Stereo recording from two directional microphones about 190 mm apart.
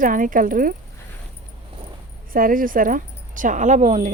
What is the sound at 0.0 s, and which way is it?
Speech, 45° right (ahead or behind).